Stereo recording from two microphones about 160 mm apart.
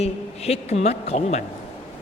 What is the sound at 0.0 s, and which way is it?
A man's voice, 40° left (ahead or behind).